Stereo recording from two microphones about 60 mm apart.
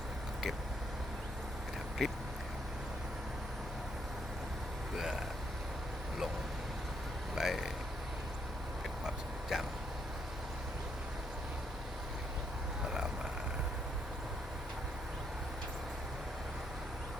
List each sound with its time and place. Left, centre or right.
2.0 s speech: centre
4.9 s speech: centre
7.3 s vehicle: centre
9.0 s vehicle: centre